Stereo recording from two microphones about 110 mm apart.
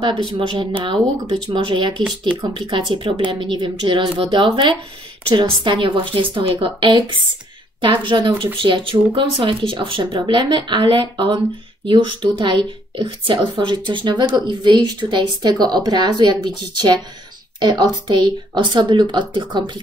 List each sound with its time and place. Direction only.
0.0 s speech: 45° right (ahead or behind)